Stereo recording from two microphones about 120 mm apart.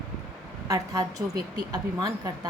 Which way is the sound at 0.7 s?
30° right (ahead or behind).